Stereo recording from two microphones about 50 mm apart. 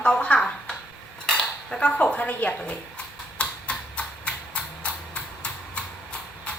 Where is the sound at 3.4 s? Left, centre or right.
Left.